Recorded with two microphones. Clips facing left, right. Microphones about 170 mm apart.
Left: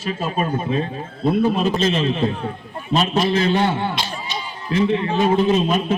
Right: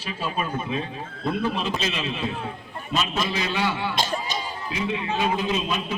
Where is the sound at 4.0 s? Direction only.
45° right (ahead or behind).